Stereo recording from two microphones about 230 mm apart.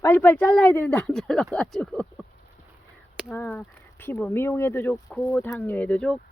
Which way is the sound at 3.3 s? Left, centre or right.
Centre.